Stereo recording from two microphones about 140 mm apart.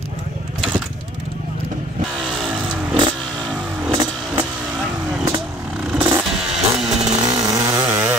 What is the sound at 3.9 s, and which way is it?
Vehicle, 30° right (ahead or behind).